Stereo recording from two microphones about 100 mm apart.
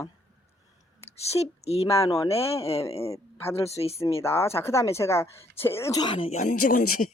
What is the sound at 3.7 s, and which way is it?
Speech, 90° left.